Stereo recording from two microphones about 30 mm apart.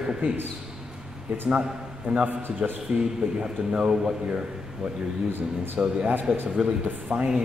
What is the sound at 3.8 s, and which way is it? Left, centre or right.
Speech, centre.